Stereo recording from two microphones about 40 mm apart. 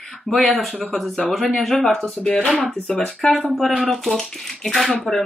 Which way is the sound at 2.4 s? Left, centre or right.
Centre.